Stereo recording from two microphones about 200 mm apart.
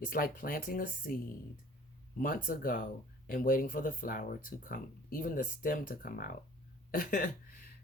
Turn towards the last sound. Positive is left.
turn(degrees=45)  # may be behind; listen again after turning